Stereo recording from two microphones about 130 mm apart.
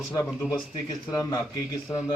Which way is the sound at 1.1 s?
25° left (ahead or behind).